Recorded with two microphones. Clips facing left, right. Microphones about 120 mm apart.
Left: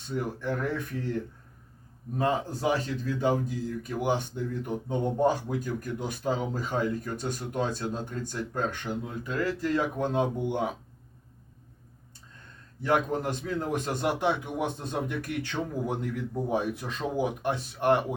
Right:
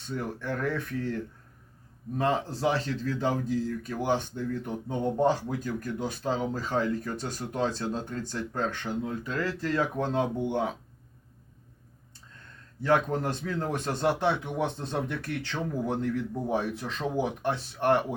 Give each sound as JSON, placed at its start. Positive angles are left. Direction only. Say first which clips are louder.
{"t": 0.1, "sound": "speech", "louder": "left 2 dB", "side_deg": 15}
{"t": 12.8, "sound": "speech", "louder": "right 1 dB", "side_deg": 15}